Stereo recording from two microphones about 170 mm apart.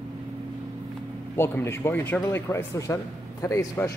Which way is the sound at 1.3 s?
15° left (ahead or behind).